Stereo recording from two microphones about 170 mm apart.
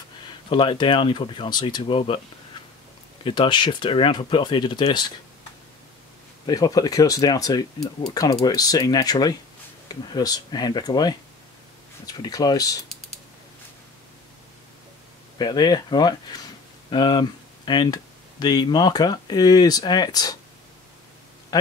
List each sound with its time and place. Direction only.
0.5 s speech: 30° left (ahead or behind)
3.3 s speech: 30° left (ahead or behind)
6.4 s speech: 20° left (ahead or behind)
15.3 s speech: 25° left (ahead or behind)